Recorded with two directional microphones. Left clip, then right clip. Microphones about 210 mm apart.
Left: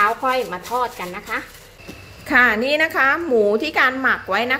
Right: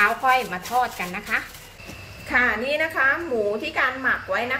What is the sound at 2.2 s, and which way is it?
A woman's voice, 55° left (ahead or behind).